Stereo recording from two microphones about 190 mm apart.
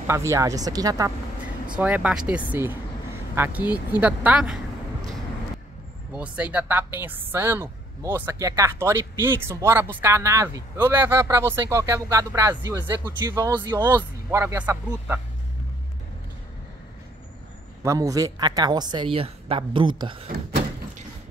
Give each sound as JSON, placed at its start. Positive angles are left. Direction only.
{"t": 0.0, "sound": "a woman's voice", "side_deg": -15}
{"t": 1.7, "sound": "a woman's voice", "side_deg": -5}
{"t": 6.1, "sound": "a woman's voice", "side_deg": -5}
{"t": 17.8, "sound": "a woman's voice", "side_deg": -20}